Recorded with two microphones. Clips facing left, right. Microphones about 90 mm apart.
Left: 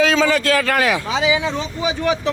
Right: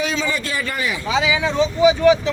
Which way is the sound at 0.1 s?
90° left.